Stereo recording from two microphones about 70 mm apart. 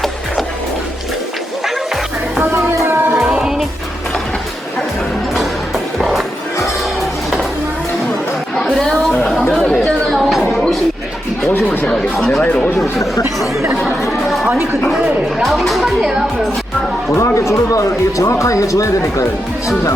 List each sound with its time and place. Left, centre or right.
2.4 s music: right
3.2 s music: centre
5.3 s music: centre
8.7 s a sound: centre
9.4 s chatter: centre
10.1 s chatter: centre
11.4 s speech: left
15.4 s speech: centre
17.2 s speech: left